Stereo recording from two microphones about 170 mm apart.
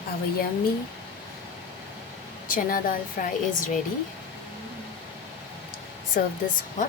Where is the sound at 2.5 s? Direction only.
55° left (ahead or behind).